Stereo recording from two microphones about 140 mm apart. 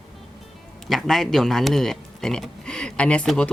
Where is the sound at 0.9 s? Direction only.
Centre (ahead or behind).